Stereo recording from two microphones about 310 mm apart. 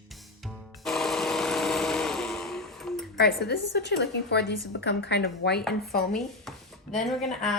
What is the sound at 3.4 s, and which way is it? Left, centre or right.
A woman's voice, left.